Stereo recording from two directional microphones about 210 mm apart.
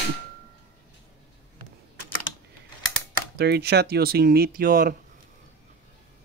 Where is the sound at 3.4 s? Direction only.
50° right (ahead or behind).